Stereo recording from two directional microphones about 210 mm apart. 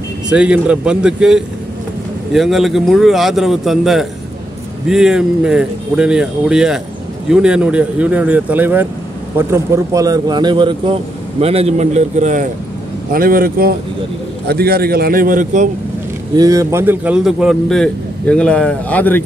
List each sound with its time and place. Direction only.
0.3 s a man's voice: 5° right (ahead or behind); by 15.7 s 35° right (ahead or behind)
16.3 s a man's voice: 15° right (ahead or behind); by 19.2 s 10° left (ahead or behind)